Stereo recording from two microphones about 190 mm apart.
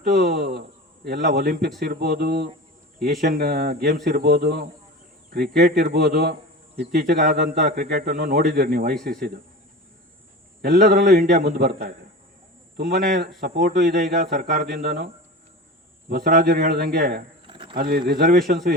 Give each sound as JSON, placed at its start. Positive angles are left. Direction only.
{"t": 0.0, "sound": "speech", "side_deg": -55}
{"t": 10.6, "sound": "speech", "side_deg": -55}
{"t": 13.5, "sound": "speech", "side_deg": -40}
{"t": 13.7, "sound": "speech", "side_deg": -60}
{"t": 17.4, "sound": "a sound", "side_deg": -25}
{"t": 17.7, "sound": "speech", "side_deg": -50}